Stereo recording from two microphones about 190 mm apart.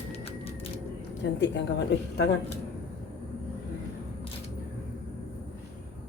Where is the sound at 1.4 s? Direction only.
65° left (ahead or behind).